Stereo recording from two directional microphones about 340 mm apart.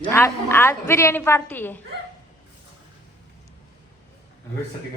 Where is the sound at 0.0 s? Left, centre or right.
Centre.